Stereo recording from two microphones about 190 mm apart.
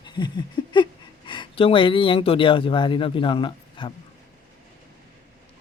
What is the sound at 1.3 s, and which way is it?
A man's voice, 25° left (ahead or behind).